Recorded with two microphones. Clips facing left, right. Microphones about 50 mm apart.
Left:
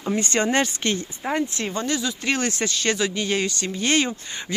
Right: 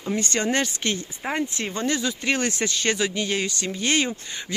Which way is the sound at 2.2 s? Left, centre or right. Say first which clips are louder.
Even; centre.